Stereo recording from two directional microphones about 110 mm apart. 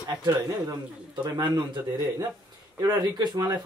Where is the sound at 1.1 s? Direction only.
40° right (ahead or behind).